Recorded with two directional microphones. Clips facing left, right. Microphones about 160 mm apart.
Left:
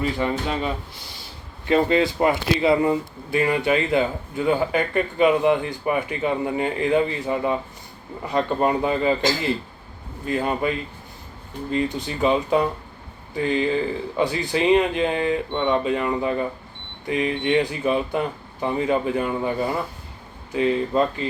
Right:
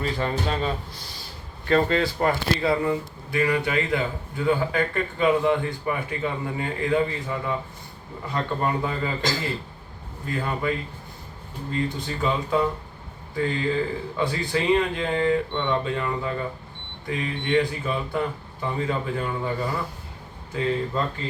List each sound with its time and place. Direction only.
0.0 s speech: 10° left (ahead or behind)